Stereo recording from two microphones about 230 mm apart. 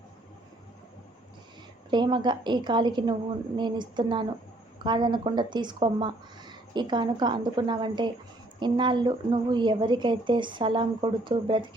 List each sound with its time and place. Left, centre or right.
1.9 s speech: centre